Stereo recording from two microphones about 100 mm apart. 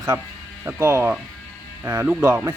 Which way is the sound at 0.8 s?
25° right (ahead or behind).